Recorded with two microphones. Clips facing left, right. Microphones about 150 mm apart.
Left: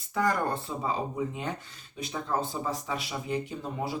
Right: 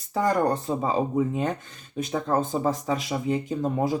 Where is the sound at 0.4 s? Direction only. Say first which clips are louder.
Right 6 dB; 40° right (ahead or behind).